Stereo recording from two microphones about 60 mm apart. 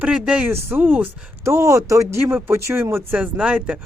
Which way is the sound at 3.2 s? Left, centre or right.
Right.